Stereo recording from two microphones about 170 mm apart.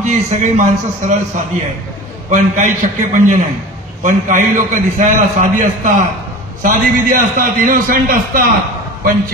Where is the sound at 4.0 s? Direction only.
50° right (ahead or behind).